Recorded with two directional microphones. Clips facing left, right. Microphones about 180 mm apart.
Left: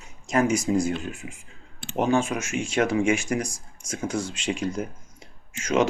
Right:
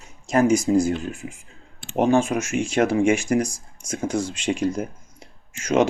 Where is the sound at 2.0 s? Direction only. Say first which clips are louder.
Right 4 dB; 40° right (ahead or behind).